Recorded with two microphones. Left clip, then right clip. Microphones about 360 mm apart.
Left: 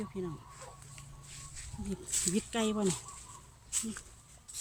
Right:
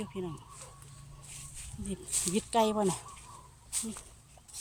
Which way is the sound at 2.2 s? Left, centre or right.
Centre.